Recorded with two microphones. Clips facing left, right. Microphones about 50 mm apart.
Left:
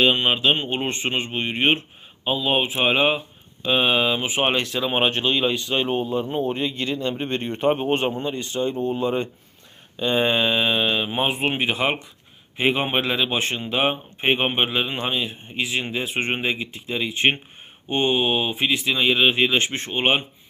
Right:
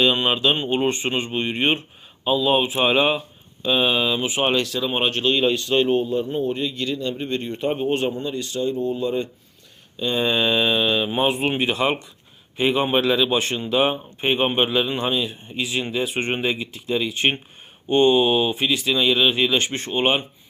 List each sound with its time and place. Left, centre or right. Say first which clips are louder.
0.0 s speech: even; left
3.7 s speech: even; left